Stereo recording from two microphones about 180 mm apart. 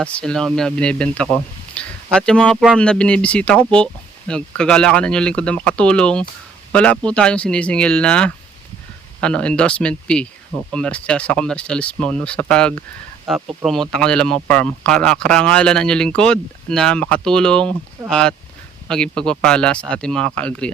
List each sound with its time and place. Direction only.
0.0 s speech: 5° left (ahead or behind)